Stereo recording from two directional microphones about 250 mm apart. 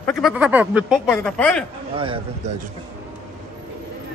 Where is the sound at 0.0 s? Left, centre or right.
Centre.